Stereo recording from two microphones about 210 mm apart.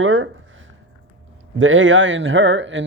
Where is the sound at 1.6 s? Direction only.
65° right (ahead or behind).